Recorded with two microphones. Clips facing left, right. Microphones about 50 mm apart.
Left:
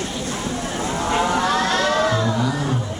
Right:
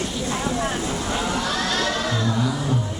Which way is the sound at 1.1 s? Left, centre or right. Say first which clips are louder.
Left 8 dB; left.